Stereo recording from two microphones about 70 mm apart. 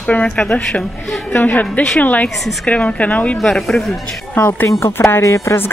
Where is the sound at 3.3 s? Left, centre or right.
Centre.